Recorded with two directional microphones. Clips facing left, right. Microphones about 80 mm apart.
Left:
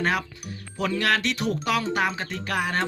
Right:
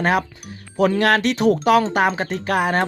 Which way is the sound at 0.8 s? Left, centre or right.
Right.